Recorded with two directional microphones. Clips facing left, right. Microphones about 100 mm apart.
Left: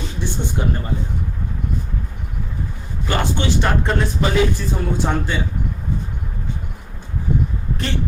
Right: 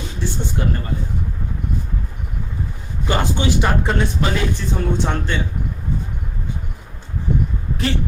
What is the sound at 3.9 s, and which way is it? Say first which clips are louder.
Speech: even; centre (ahead or behind).